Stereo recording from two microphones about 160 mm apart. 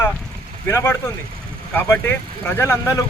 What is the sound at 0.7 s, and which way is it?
A man's voice, 15° left (ahead or behind).